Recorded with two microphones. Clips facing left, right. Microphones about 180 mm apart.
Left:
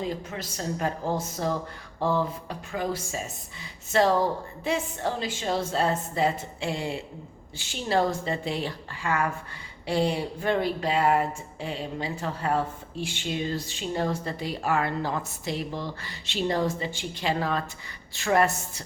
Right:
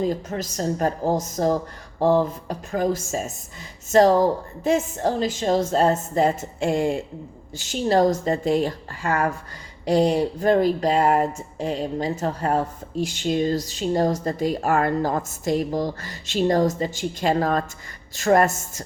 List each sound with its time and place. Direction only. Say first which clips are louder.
0.0 s a woman's voice: right 7 dB; 45° right (ahead or behind)